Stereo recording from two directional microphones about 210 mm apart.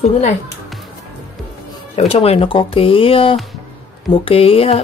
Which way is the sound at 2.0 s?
30° left (ahead or behind).